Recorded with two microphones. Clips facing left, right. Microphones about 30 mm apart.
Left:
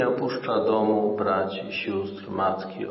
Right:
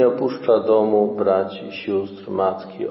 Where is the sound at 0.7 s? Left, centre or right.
Centre.